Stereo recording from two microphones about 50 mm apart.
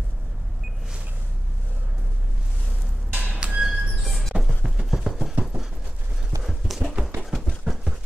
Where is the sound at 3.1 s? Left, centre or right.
Right.